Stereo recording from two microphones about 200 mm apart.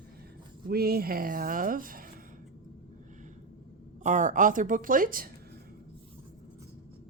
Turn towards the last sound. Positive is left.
turn(degrees=-45)  # may be behind; listen again after turning